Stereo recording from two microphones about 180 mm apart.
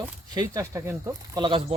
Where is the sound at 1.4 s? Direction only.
30° right (ahead or behind).